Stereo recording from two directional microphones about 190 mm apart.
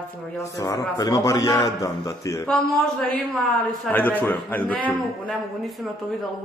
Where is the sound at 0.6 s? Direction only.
20° left (ahead or behind).